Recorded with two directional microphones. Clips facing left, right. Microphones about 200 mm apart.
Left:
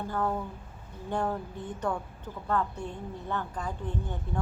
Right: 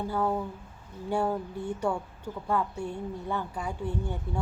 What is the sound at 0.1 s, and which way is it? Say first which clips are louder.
A woman's voice: right 1 dB; 10° right (ahead or behind).